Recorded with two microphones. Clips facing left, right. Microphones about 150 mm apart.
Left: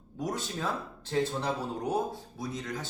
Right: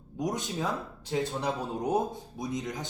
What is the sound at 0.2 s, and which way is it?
Speech, 20° right (ahead or behind).